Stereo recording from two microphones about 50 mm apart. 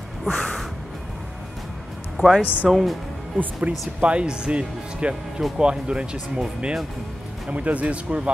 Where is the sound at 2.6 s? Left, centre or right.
Centre.